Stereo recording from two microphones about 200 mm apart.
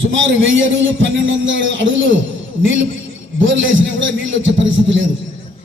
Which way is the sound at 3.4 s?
70° right (ahead or behind).